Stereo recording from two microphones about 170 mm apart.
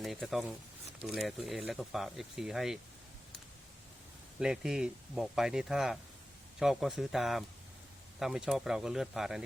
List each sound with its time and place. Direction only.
0.0 s speech: centre (ahead or behind)
4.4 s speech: 5° right (ahead or behind)